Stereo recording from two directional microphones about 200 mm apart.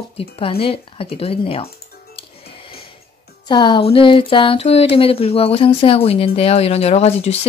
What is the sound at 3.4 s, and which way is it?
Speech, 25° left (ahead or behind).